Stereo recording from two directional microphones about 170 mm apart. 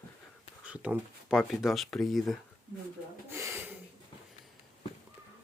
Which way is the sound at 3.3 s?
15° right (ahead or behind).